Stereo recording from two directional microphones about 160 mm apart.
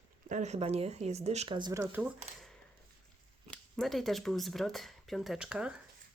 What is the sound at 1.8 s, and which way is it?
Speech, 10° right (ahead or behind).